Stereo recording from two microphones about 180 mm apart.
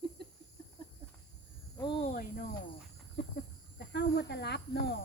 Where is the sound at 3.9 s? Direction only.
65° left (ahead or behind).